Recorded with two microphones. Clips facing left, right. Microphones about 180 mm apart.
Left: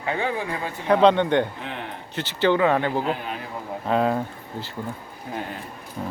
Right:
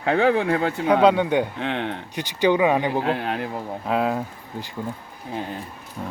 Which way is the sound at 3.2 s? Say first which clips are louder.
Right 6 dB; 70° right (ahead or behind).